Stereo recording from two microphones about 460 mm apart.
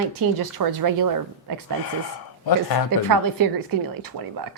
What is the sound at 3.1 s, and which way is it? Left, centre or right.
Speech, right.